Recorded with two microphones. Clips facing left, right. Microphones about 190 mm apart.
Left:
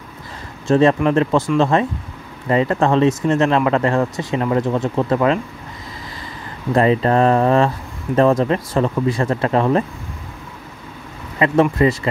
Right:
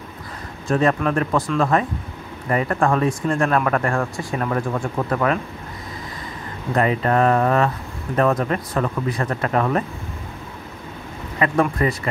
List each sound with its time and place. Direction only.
0.7 s speech: 25° left (ahead or behind)
6.7 s speech: 30° left (ahead or behind)
11.3 s speech: 25° left (ahead or behind)